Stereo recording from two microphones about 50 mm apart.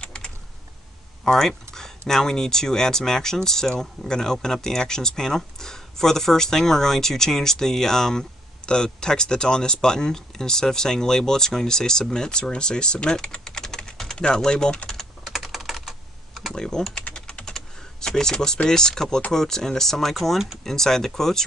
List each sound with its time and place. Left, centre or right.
0.0 s typing: centre
1.2 s speech: centre
13.4 s typing: centre
14.1 s speech: centre
14.9 s typing: centre
16.5 s typing: centre
17.6 s speech: centre
20.6 s speech: centre